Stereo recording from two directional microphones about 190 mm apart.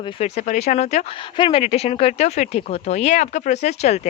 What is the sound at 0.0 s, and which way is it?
A woman's voice, 30° left (ahead or behind).